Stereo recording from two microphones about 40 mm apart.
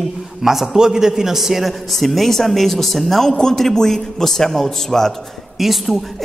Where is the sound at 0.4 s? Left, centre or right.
Centre.